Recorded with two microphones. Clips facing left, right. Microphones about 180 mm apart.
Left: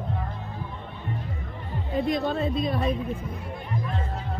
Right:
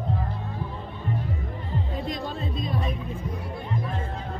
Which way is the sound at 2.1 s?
65° left (ahead or behind).